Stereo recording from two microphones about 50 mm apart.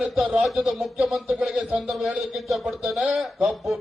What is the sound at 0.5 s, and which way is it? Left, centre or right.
Speech, centre.